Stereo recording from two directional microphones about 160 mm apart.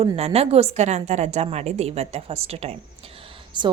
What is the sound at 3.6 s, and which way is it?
Speech, 30° right (ahead or behind).